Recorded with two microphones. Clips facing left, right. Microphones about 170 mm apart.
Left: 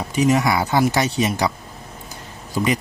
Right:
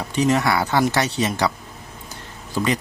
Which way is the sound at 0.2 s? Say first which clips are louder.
Left 1 dB; 10° left (ahead or behind).